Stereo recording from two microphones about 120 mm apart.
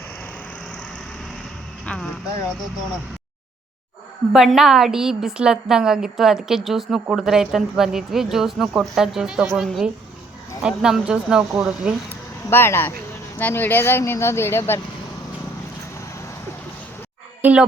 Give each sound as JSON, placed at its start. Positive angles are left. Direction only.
{"t": 1.8, "sound": "music", "side_deg": 10}
{"t": 4.3, "sound": "a woman's voice", "side_deg": -5}
{"t": 12.5, "sound": "speech", "side_deg": 20}
{"t": 17.4, "sound": "a child's voice", "side_deg": -10}